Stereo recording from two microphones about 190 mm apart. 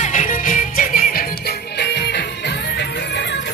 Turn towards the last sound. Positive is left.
turn(degrees=65)  # may be behind; listen again after turning